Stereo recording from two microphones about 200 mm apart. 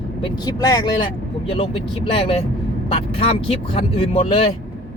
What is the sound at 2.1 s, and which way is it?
Speech, 30° left (ahead or behind).